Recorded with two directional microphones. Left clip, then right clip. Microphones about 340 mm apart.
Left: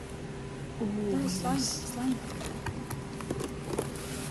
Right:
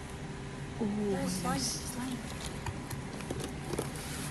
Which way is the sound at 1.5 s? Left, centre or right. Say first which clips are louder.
Left 2 dB; centre.